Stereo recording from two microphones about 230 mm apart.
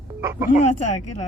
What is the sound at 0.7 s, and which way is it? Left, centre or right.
Speech, left.